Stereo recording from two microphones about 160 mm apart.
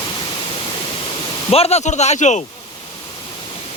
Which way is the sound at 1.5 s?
40° left (ahead or behind).